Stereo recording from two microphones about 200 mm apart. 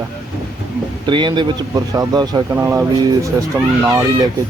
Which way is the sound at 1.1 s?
25° right (ahead or behind).